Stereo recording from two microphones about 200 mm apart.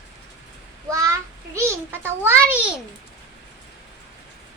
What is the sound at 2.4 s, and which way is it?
Speech, 5° right (ahead or behind).